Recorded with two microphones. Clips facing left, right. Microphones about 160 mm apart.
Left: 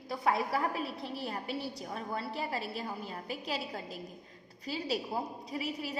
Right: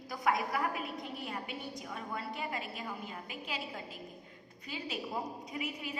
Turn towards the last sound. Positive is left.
turn(degrees=35)  # may be behind; listen again after turning